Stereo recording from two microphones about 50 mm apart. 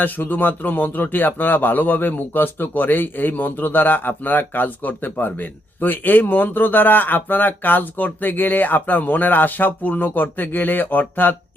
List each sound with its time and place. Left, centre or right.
0.0 s speech: left